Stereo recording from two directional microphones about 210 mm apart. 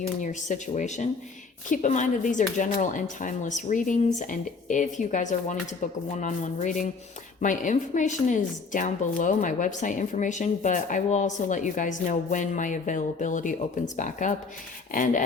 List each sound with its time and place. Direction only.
0.2 s a woman's voice: 35° left (ahead or behind)